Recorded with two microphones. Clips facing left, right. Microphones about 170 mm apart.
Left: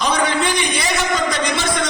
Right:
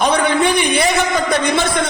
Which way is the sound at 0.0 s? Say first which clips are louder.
Right 4 dB; 55° right (ahead or behind).